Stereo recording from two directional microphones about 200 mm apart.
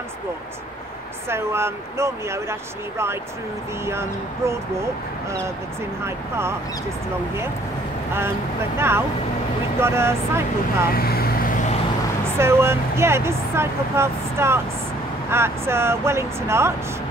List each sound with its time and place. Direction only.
1.3 s speech: 10° right (ahead or behind)
6.0 s speech: 10° right (ahead or behind)
8.7 s speech: 10° right (ahead or behind)
11.0 s vehicle: 50° left (ahead or behind)
12.4 s speech: 10° right (ahead or behind)